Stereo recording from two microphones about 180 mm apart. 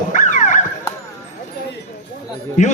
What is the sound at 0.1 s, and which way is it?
Dog, 45° left (ahead or behind).